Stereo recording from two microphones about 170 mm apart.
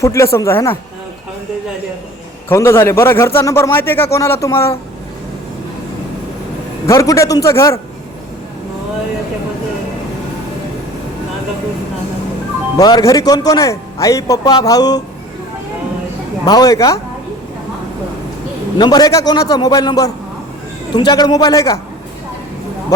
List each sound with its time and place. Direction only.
0.0 s a man's voice: 15° left (ahead or behind)
2.5 s a man's voice: 15° left (ahead or behind)
6.8 s a man's voice: 20° left (ahead or behind)
12.7 s a man's voice: 20° left (ahead or behind)
16.5 s a man's voice: 20° left (ahead or behind)
18.8 s a man's voice: 25° left (ahead or behind)